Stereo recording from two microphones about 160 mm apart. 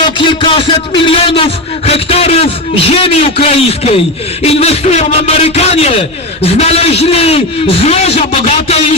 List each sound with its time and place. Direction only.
0.2 s a man's voice: 30° left (ahead or behind)